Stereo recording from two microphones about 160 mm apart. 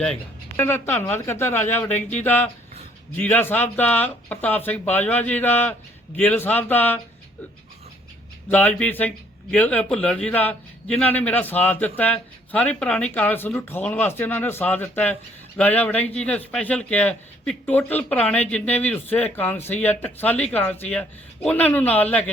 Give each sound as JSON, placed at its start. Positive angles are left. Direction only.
{"t": 0.0, "sound": "speech", "side_deg": 10}
{"t": 1.9, "sound": "speech", "side_deg": 45}
{"t": 2.2, "sound": "speech", "side_deg": 10}
{"t": 8.4, "sound": "speech", "side_deg": 10}